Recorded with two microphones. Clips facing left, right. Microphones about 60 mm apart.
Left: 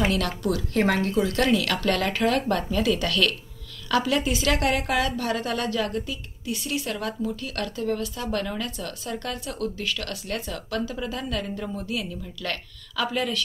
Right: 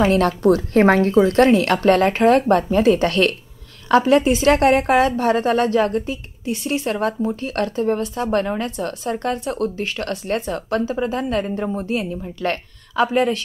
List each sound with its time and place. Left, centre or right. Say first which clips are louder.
0.0 s a woman's voice: right 9 dB; right